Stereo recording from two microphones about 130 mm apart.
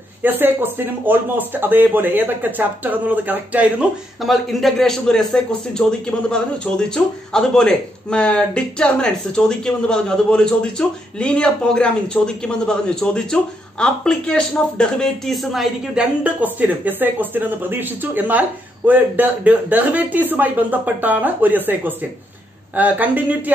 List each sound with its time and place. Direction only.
0.2 s speech: 15° right (ahead or behind)
4.2 s speech: centre (ahead or behind)